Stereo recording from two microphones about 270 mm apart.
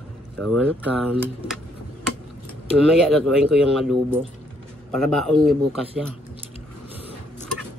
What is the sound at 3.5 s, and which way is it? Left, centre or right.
Speech, centre.